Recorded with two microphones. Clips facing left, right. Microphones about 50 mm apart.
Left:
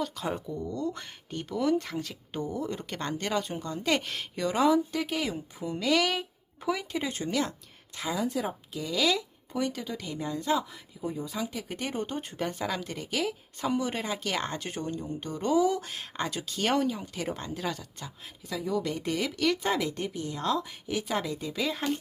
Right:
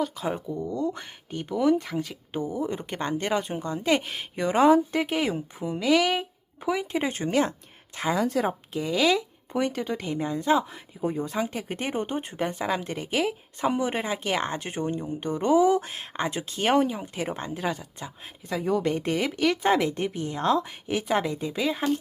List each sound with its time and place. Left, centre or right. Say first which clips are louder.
0.0 s speech: right 4 dB; centre
4.4 s speech: right 5 dB; right
5.6 s speech: right 4 dB; centre
7.0 s speech: right 5 dB; right
8.1 s speech: right 5 dB; right
8.7 s speech: right 4 dB; right
21.6 s speech: right 4 dB; centre